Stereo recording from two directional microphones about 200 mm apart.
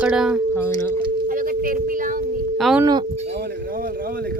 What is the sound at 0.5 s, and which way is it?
Speech, 10° left (ahead or behind).